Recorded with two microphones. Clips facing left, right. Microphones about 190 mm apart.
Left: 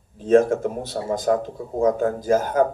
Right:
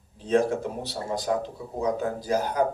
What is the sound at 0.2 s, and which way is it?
Speech, 50° left (ahead or behind).